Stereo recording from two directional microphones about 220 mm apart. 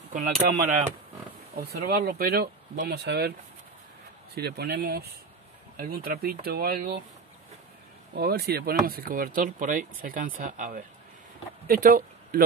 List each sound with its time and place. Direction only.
0.1 s speech: 35° right (ahead or behind)
1.9 s speech: 45° right (ahead or behind)
4.4 s speech: 45° right (ahead or behind)
8.1 s a man's voice: 45° right (ahead or behind)